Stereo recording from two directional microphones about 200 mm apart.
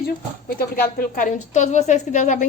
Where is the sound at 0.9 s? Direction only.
45° left (ahead or behind).